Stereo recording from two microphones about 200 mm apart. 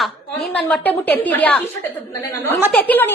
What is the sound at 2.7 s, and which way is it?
Speech, 5° left (ahead or behind).